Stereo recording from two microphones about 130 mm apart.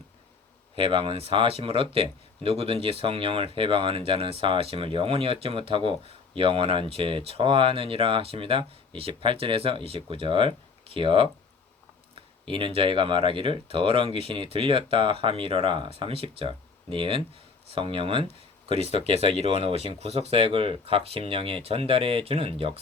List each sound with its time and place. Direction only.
0.8 s speech: 45° right (ahead or behind)
12.5 s speech: 45° right (ahead or behind)